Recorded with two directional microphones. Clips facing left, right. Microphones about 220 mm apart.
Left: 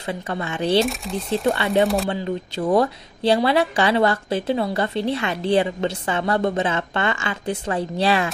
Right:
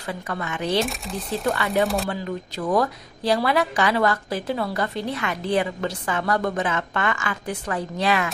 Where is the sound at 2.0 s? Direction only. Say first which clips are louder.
Left 3 dB; 25° left (ahead or behind).